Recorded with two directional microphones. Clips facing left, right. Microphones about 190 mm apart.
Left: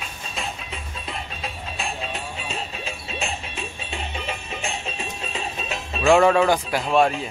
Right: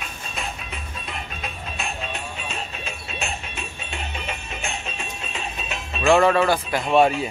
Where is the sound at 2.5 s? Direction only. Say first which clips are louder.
Left 1 dB; 30° left (ahead or behind).